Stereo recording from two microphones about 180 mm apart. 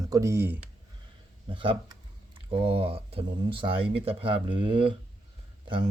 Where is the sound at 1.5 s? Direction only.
30° right (ahead or behind).